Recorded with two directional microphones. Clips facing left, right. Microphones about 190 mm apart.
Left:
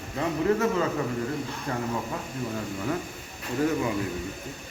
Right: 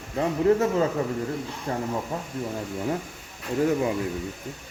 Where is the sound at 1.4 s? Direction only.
25° right (ahead or behind).